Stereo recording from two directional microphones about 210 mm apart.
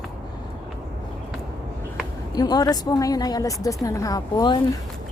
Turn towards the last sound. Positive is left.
turn(degrees=20)  # may be behind; listen again after turning